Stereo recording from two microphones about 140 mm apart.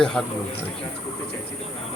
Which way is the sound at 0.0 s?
5° left (ahead or behind).